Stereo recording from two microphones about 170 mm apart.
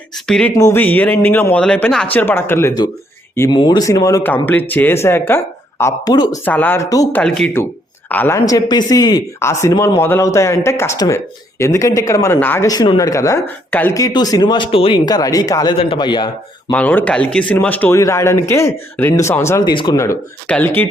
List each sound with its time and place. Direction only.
0.3 s speech: 5° left (ahead or behind)
0.5 s speech: 15° left (ahead or behind)
6.4 s speech: 10° left (ahead or behind)
7.2 s speech: 5° left (ahead or behind)
13.9 s speech: 20° left (ahead or behind)
15.7 s speech: 30° left (ahead or behind)
16.7 s speech: 10° left (ahead or behind)